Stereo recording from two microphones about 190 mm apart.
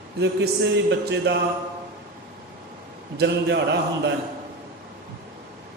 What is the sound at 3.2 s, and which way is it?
Speech, 60° right (ahead or behind).